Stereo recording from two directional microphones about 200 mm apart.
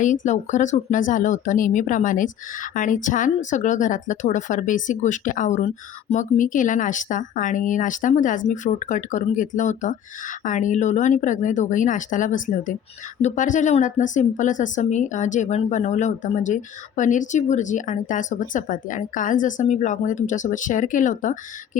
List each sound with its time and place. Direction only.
0.3 s speech: 40° left (ahead or behind)